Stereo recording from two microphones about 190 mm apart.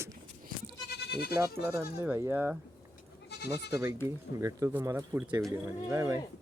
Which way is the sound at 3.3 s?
60° left (ahead or behind).